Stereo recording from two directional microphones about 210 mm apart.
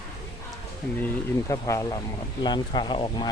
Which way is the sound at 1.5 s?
15° left (ahead or behind).